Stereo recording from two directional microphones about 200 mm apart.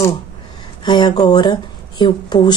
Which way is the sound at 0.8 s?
20° left (ahead or behind).